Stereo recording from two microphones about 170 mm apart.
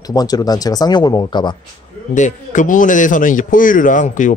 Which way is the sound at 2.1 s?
50° left (ahead or behind).